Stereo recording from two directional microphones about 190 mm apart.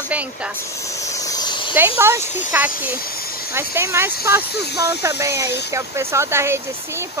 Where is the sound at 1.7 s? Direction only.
10° right (ahead or behind).